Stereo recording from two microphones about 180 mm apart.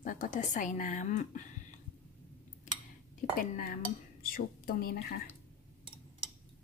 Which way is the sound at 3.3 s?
50° left (ahead or behind).